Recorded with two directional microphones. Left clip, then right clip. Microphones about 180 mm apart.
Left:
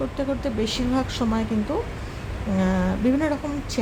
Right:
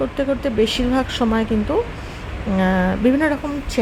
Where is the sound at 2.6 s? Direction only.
20° right (ahead or behind).